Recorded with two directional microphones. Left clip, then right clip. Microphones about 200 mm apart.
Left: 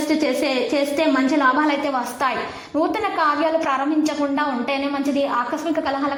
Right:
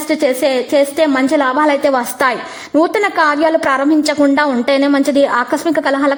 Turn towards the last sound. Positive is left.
turn(degrees=-40)  # may be behind; listen again after turning